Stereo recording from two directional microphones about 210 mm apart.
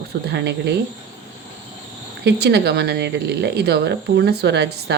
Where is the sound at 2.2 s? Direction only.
50° right (ahead or behind).